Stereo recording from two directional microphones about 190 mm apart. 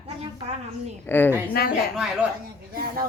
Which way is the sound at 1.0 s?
10° left (ahead or behind).